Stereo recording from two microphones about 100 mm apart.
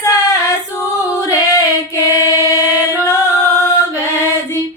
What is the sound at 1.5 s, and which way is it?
Female singing, 35° left (ahead or behind).